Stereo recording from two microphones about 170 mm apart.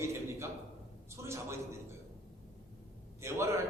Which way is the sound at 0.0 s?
15° right (ahead or behind).